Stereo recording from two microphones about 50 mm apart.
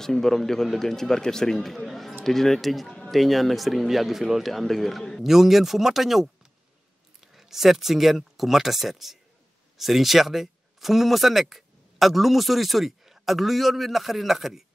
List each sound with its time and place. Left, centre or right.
0.0 s speech: centre